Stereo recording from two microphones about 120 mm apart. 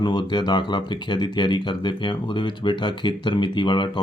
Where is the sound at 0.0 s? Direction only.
40° left (ahead or behind).